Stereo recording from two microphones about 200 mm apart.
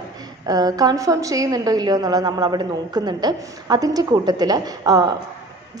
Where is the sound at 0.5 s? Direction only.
20° right (ahead or behind).